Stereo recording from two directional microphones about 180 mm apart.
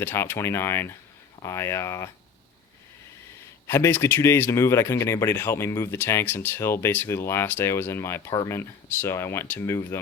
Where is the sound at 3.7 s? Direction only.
10° left (ahead or behind).